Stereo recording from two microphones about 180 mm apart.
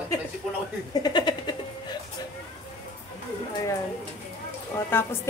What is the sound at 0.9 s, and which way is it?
Speech, 25° left (ahead or behind).